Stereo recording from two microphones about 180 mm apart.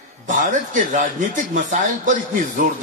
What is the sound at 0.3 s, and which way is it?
A man's voice, 45° right (ahead or behind).